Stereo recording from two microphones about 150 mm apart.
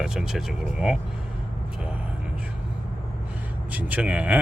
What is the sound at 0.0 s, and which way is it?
Speech, 5° right (ahead or behind).